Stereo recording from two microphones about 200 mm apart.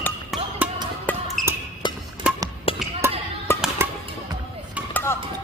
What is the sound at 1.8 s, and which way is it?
Music, 25° left (ahead or behind).